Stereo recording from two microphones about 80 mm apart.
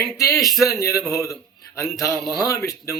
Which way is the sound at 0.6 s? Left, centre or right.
Left.